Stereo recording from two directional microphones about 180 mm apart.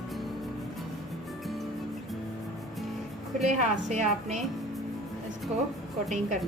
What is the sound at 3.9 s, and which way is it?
Speech, 40° right (ahead or behind).